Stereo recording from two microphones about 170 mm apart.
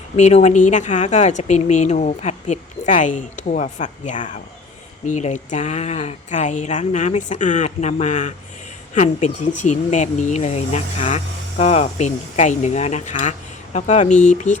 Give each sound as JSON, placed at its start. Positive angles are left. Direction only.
{"t": 0.2, "sound": "speech", "side_deg": 40}